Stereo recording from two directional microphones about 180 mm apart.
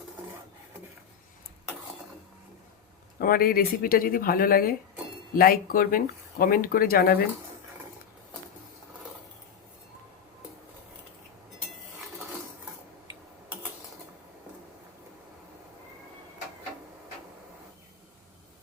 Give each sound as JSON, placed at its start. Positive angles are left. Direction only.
{"t": 3.2, "sound": "speech", "side_deg": 55}